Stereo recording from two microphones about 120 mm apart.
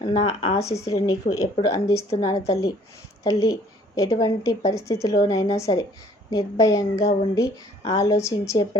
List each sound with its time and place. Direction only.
0.1 s speech: 60° left (ahead or behind)
0.6 s a woman's voice: 30° left (ahead or behind)